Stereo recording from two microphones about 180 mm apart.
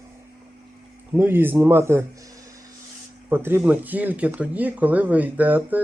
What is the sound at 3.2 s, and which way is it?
Speech, 10° right (ahead or behind).